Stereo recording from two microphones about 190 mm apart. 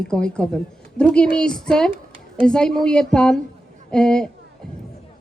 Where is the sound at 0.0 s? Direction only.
5° left (ahead or behind).